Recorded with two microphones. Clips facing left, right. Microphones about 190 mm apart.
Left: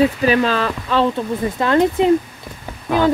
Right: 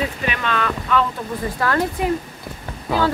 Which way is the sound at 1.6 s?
20° left (ahead or behind).